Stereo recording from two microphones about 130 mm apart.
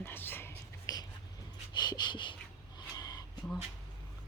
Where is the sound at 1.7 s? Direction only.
35° left (ahead or behind).